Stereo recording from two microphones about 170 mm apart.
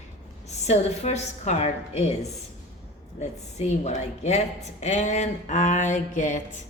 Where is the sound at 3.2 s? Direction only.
40° left (ahead or behind).